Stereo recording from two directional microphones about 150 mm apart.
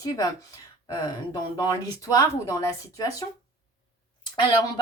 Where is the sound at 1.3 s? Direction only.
20° left (ahead or behind).